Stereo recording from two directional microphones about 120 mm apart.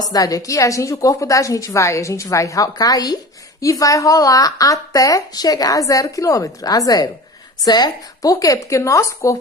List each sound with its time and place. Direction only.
0.0 s a woman's voice: 30° left (ahead or behind)